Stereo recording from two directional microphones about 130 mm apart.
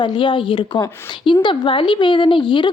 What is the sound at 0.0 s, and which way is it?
A woman's voice, 40° left (ahead or behind).